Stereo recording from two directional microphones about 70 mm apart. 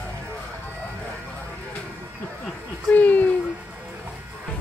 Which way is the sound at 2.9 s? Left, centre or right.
Left.